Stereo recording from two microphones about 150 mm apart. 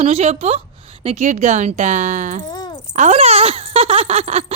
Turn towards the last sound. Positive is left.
turn(degrees=-45)  # may be behind; listen again after turning